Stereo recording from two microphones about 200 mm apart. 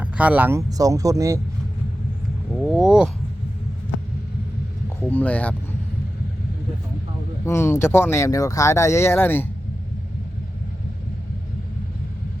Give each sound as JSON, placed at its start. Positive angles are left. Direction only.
{"t": 0.0, "sound": "speech", "side_deg": -5}
{"t": 2.7, "sound": "a sound", "side_deg": -5}
{"t": 4.9, "sound": "speech", "side_deg": 10}
{"t": 7.4, "sound": "speech", "side_deg": 15}